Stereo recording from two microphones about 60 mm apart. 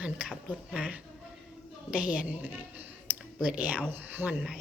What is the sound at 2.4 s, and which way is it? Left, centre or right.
Speech, right.